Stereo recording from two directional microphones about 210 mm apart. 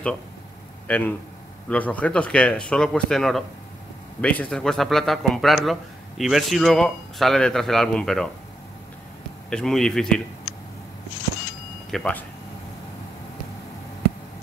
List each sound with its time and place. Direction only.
0.8 s speech: 10° left (ahead or behind)
9.5 s speech: 5° left (ahead or behind)
11.9 s speech: 5° left (ahead or behind)